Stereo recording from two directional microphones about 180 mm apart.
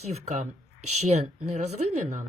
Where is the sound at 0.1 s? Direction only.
40° right (ahead or behind).